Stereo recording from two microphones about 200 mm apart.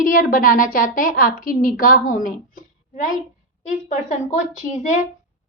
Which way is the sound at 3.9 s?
40° left (ahead or behind).